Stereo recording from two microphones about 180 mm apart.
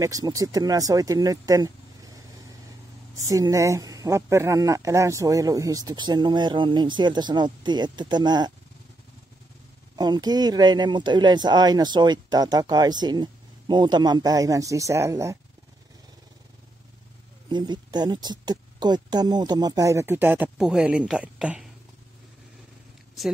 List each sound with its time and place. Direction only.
0.0 s speech: 20° right (ahead or behind)
3.2 s speech: 20° right (ahead or behind)
9.9 s speech: 20° right (ahead or behind)
17.5 s speech: 25° right (ahead or behind); by 21.6 s 5° right (ahead or behind)